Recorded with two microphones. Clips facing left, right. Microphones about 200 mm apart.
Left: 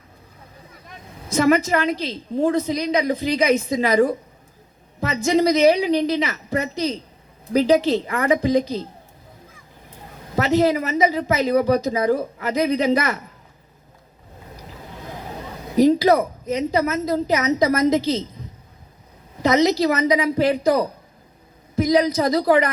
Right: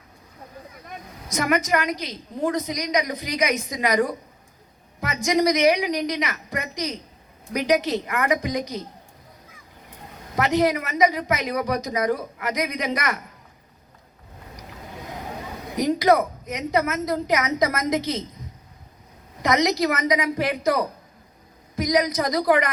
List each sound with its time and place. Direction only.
1.3 s speech: 30° left (ahead or behind)
10.3 s speech: 25° left (ahead or behind)
15.7 s speech: 30° left (ahead or behind)
19.4 s speech: 30° left (ahead or behind)